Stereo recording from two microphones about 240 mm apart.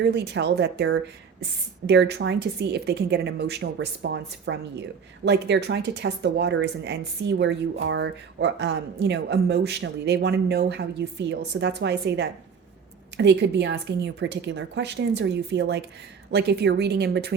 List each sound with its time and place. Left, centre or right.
0.0 s speech: right